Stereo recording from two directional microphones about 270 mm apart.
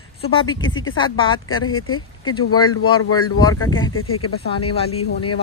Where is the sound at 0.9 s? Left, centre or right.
Centre.